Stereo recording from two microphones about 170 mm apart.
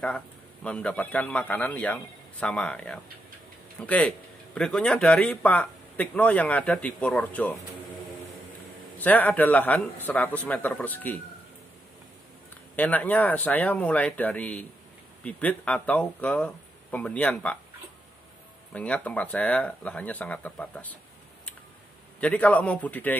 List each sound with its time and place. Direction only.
0.7 s speech: 10° left (ahead or behind)
9.0 s speech: 10° left (ahead or behind)
12.7 s speech: 10° left (ahead or behind)
18.7 s speech: 5° left (ahead or behind)
22.2 s speech: 10° left (ahead or behind)